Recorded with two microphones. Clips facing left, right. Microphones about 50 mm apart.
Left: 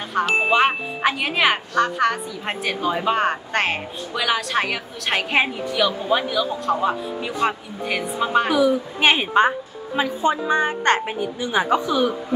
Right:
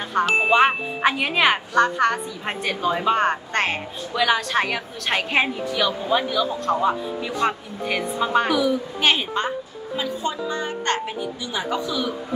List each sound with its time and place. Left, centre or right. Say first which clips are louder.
0.1 s speech: even; centre
8.5 s a woman's voice: left 3 dB; centre
9.9 s speech: left 5 dB; left